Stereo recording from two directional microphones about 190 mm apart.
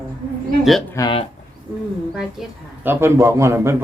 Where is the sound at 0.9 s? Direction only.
25° left (ahead or behind).